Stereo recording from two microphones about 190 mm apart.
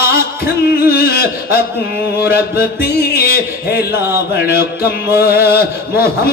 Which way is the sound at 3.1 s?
55° left (ahead or behind).